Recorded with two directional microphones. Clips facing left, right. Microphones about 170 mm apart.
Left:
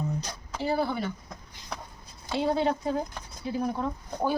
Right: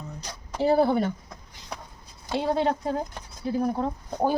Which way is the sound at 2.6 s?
45° right (ahead or behind).